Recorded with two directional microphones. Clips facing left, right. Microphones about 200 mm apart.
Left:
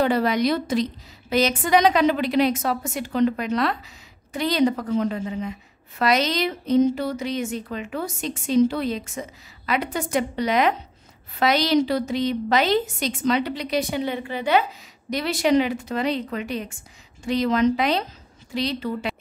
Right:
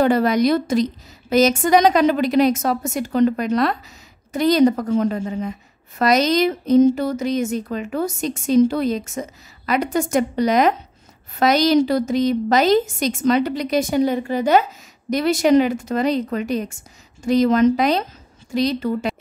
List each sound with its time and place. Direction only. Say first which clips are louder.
0.0 s a woman's voice: right 4 dB; 45° right (ahead or behind)